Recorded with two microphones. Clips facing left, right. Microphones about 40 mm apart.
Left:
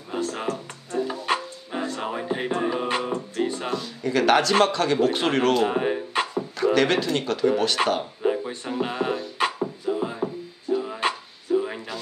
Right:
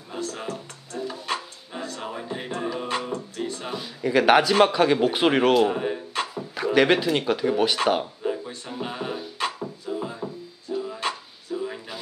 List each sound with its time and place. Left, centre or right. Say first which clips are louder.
0.1 s music: left 4 dB; centre
3.7 s a man's voice: right 6 dB; centre
5.7 s music: left 2 dB; centre
6.5 s speech: right 1 dB; centre
8.2 s music: left 4 dB; centre